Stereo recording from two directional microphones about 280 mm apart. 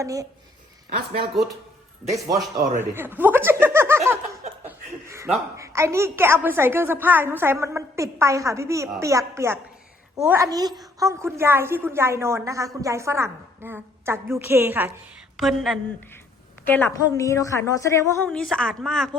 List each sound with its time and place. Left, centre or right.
0.0 s a woman's voice: centre
0.9 s speech: right
2.7 s a woman's voice: centre